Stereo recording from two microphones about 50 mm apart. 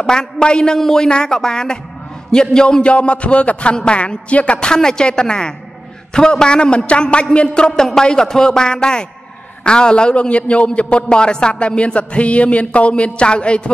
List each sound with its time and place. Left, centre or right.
0.0 s a man's voice: centre